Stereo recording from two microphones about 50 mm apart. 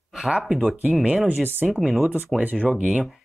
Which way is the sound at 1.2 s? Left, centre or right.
Right.